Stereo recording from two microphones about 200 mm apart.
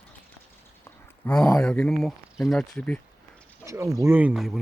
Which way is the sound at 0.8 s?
5° left (ahead or behind).